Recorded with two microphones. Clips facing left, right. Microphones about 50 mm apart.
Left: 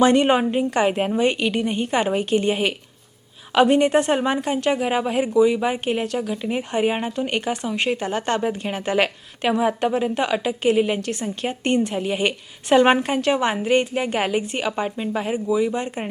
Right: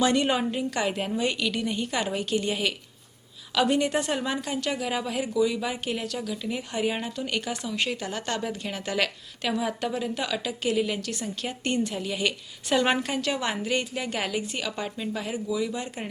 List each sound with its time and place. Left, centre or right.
0.0 s a woman's voice: left